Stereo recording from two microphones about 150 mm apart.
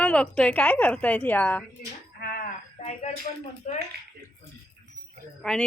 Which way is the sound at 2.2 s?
80° left.